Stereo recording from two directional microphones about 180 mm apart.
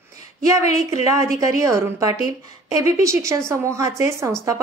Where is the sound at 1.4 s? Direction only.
15° right (ahead or behind).